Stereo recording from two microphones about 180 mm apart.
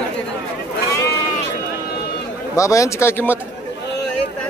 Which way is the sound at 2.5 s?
15° left (ahead or behind).